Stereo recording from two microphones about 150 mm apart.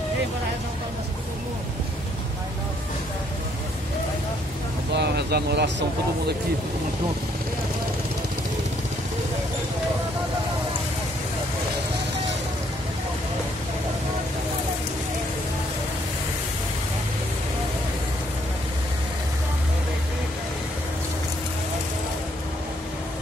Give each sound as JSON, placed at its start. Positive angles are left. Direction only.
{"t": 5.0, "sound": "vehicle", "side_deg": -90}